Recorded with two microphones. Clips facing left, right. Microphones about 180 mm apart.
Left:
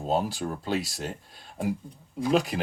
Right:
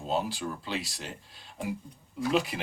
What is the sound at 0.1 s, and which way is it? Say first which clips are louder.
Speech: left 3 dB; 45° left (ahead or behind).